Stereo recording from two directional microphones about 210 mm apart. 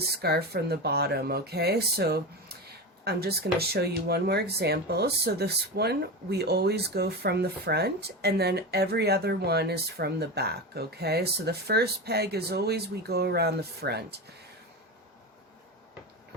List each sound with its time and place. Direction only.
0.2 s speech: 50° right (ahead or behind)